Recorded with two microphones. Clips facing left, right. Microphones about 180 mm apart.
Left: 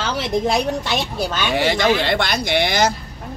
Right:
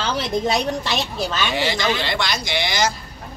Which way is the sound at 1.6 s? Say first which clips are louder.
Left 7 dB; 55° left (ahead or behind).